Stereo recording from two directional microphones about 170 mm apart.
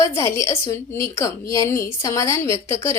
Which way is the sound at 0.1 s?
15° left (ahead or behind).